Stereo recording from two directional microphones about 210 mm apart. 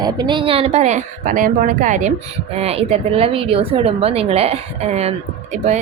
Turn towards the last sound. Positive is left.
turn(degrees=-30)  # may be behind; listen again after turning